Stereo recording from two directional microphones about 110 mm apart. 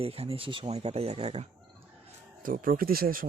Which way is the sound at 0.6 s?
80° right.